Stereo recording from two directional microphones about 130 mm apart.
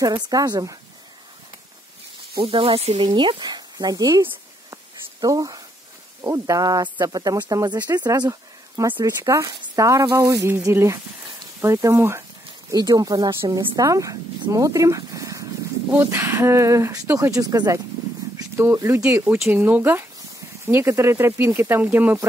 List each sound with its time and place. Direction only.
0.0 s speech: 30° right (ahead or behind)
2.4 s speech: 45° right (ahead or behind)
3.0 s speech: 40° right (ahead or behind); by 22.2 s 15° right (ahead or behind)